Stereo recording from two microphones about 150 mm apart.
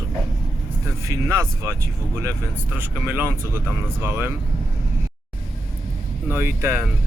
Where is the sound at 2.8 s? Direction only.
15° right (ahead or behind).